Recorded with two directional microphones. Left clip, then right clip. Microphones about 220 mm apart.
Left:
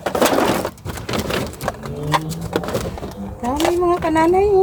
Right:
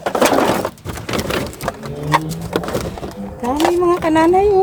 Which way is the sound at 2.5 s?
10° right (ahead or behind).